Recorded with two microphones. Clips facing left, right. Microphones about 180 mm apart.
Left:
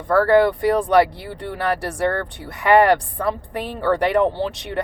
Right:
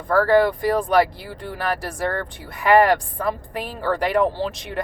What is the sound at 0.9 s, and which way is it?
Speech, 70° left (ahead or behind).